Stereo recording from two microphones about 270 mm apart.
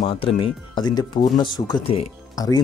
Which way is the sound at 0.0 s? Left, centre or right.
Centre.